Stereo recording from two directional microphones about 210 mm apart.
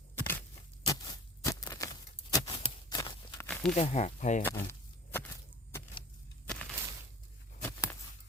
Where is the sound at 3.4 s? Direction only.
5° left (ahead or behind).